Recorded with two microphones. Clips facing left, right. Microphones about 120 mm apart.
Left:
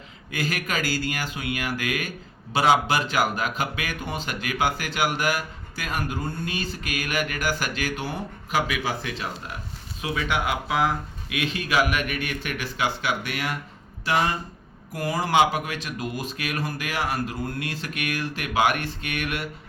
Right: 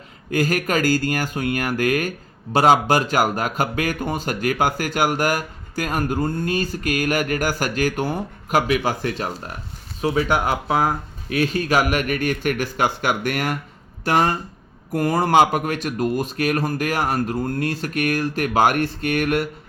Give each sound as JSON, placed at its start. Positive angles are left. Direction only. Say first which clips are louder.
{"t": 0.3, "sound": "speech", "louder": "right 8 dB", "side_deg": -45}